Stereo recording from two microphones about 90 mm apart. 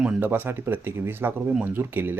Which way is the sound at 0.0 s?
20° right (ahead or behind).